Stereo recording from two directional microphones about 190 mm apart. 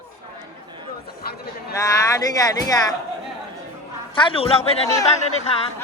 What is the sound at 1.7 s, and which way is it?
Speech, 15° left (ahead or behind).